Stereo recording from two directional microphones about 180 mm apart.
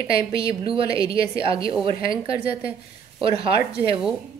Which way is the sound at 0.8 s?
20° left (ahead or behind).